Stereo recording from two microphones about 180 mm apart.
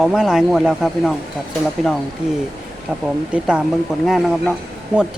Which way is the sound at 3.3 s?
5° right (ahead or behind).